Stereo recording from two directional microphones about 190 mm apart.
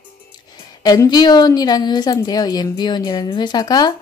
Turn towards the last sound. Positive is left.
turn(degrees=20)  # may be behind; listen again after turning